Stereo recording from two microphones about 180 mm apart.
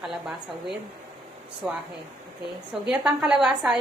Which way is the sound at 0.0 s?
Centre (ahead or behind).